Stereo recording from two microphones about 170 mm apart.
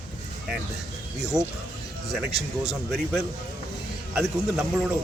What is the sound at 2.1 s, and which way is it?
Speech, centre (ahead or behind).